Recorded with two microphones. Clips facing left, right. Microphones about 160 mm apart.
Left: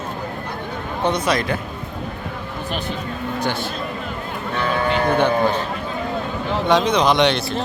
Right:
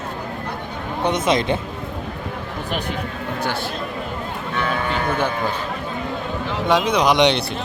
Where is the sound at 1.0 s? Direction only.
20° right (ahead or behind).